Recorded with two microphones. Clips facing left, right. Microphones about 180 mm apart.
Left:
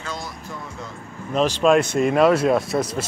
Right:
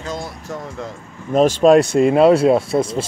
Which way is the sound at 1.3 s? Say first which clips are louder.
Right 6 dB; 45° right (ahead or behind).